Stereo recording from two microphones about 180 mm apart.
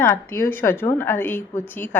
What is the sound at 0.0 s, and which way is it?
A woman's voice, 15° left (ahead or behind).